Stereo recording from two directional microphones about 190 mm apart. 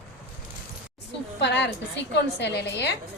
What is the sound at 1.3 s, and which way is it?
A woman's voice, 65° left (ahead or behind).